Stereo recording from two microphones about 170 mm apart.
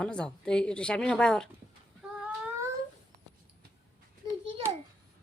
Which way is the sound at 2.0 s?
5° right (ahead or behind).